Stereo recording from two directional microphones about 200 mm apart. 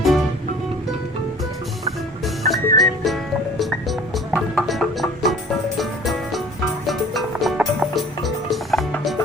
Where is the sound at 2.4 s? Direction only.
40° right (ahead or behind).